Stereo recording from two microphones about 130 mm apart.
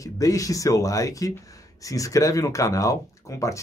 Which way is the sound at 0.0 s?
25° left (ahead or behind).